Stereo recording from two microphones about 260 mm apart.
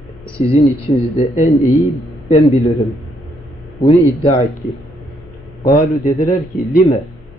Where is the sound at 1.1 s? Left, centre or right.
Left.